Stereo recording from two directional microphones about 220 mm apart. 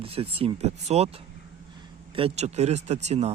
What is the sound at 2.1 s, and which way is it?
Speech, 25° right (ahead or behind).